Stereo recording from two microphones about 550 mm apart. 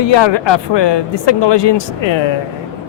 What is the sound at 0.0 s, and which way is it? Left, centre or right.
A woman's voice, left.